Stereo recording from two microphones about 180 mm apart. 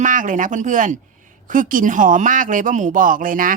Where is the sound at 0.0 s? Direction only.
45° right (ahead or behind).